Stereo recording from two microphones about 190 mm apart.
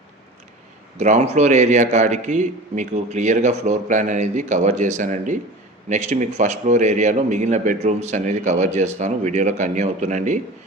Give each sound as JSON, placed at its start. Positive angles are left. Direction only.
{"t": 0.9, "sound": "a man's voice", "side_deg": -40}